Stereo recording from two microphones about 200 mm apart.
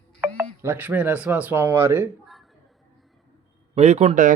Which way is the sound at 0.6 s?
10° right (ahead or behind).